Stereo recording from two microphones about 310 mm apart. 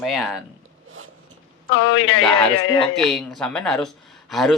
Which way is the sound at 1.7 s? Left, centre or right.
Left.